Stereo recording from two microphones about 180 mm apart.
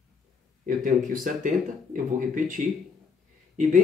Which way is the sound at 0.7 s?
50° right (ahead or behind).